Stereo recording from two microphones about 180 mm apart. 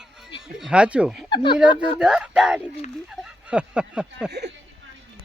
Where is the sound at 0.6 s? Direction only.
5° right (ahead or behind).